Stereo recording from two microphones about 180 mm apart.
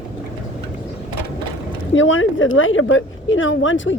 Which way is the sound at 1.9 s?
90° left.